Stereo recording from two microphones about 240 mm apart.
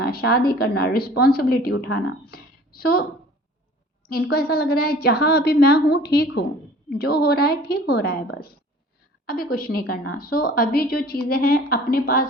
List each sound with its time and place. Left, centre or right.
0.3 s a woman's voice: left
4.1 s a woman's voice: left